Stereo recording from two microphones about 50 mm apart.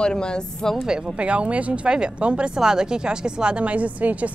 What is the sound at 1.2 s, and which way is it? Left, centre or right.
A woman's voice, right.